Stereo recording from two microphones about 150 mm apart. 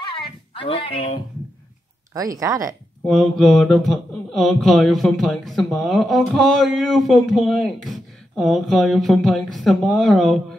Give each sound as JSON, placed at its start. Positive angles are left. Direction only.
{"t": 0.6, "sound": "speech", "side_deg": 35}
{"t": 2.1, "sound": "speech", "side_deg": -20}
{"t": 3.3, "sound": "speech", "side_deg": 0}